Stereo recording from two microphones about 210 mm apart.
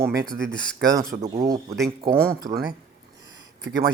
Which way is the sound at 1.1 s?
30° right (ahead or behind).